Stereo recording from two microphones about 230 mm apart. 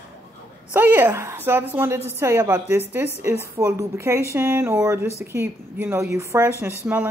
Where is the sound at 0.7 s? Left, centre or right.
Centre.